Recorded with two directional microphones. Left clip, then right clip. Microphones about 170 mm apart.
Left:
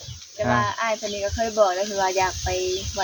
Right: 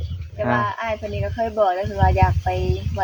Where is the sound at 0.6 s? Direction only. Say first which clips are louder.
Even; 15° right (ahead or behind).